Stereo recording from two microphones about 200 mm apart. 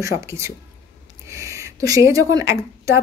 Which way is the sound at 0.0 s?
15° right (ahead or behind).